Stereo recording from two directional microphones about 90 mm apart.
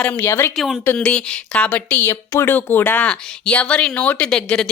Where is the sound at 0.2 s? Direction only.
30° left (ahead or behind).